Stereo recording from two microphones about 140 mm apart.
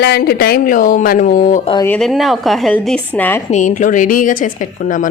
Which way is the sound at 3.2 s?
15° left (ahead or behind).